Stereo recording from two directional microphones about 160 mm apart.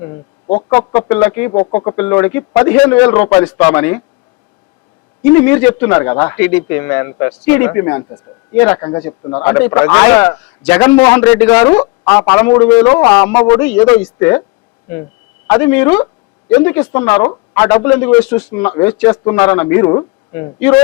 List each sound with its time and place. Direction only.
0.0 s a man's voice: 25° left (ahead or behind)
5.5 s a man's voice: 15° left (ahead or behind)
15.4 s speech: 15° left (ahead or behind)